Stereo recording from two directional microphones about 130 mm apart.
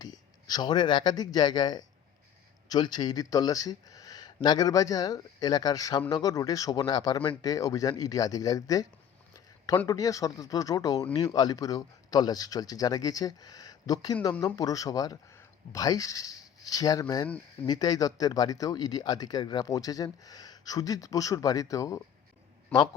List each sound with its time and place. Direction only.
0.0 s speech: 30° left (ahead or behind)